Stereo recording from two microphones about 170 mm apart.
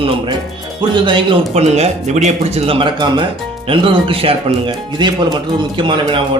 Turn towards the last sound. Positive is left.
turn(degrees=-30)  # may be behind; listen again after turning